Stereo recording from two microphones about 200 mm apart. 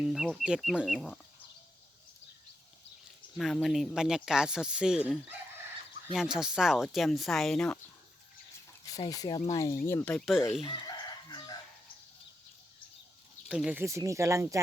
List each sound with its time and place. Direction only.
0.0 s speech: centre (ahead or behind)
3.3 s speech: centre (ahead or behind)
6.1 s speech: 5° right (ahead or behind)
8.9 s speech: 20° left (ahead or behind); by 10.7 s centre (ahead or behind)
10.7 s chicken: 25° left (ahead or behind)
13.5 s speech: 5° right (ahead or behind)